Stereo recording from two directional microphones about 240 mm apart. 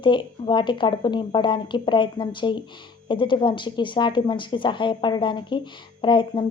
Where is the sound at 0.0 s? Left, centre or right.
Centre.